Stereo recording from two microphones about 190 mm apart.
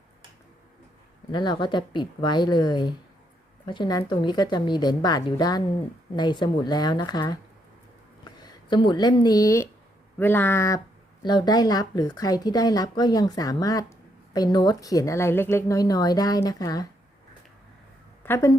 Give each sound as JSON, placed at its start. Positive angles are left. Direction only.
{"t": 1.3, "sound": "speech", "side_deg": 25}
{"t": 8.7, "sound": "speech", "side_deg": 25}
{"t": 18.2, "sound": "a woman's voice", "side_deg": 15}